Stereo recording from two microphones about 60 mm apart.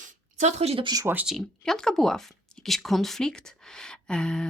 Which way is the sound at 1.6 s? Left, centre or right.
Centre.